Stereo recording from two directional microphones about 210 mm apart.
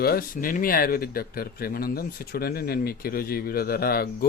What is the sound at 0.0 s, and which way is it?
Speech, 45° left (ahead or behind).